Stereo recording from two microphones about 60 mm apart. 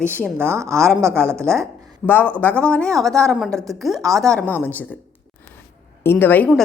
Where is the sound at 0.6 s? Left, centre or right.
Right.